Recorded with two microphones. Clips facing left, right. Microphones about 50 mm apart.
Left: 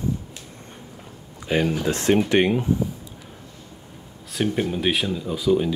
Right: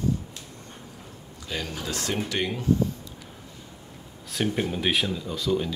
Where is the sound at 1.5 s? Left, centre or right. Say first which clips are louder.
Left 10 dB; left.